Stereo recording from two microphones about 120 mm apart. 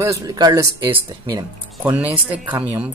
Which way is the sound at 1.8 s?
10° right (ahead or behind).